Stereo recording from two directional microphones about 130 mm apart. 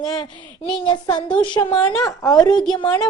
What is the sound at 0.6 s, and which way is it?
A child's voice, 45° left (ahead or behind).